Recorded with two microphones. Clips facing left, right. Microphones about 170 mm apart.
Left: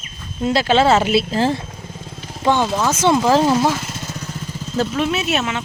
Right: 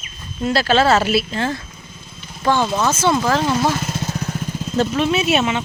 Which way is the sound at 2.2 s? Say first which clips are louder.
Left 5 dB; 90° left.